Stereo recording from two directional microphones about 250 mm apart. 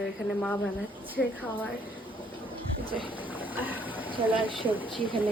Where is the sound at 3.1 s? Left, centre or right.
Centre.